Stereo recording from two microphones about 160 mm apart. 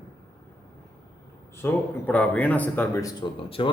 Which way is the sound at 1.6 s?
10° left (ahead or behind).